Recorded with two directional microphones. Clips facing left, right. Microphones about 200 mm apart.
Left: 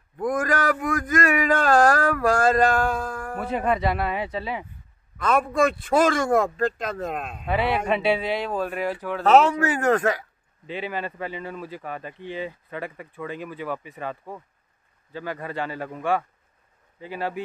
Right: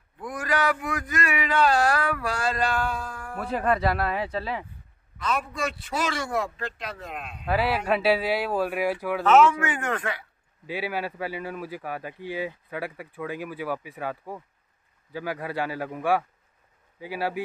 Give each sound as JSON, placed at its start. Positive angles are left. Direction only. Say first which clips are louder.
{"t": 0.2, "sound": "a sound", "louder": "left 4 dB", "side_deg": 45}
{"t": 3.3, "sound": "speech", "louder": "even", "side_deg": 0}
{"t": 5.2, "sound": "a man's voice", "louder": "left 8 dB", "side_deg": 50}
{"t": 7.4, "sound": "speech", "louder": "left 1 dB", "side_deg": 0}
{"t": 9.2, "sound": "a man's voice", "louder": "left 2 dB", "side_deg": 35}
{"t": 10.7, "sound": "speech", "louder": "even", "side_deg": -10}